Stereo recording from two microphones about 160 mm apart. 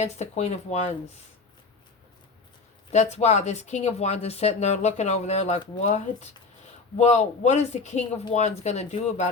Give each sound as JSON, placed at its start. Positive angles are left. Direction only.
{"t": 0.0, "sound": "speech", "side_deg": 45}
{"t": 2.9, "sound": "speech", "side_deg": 45}